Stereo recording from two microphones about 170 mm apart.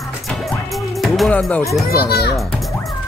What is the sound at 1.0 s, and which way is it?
Speech, centre (ahead or behind).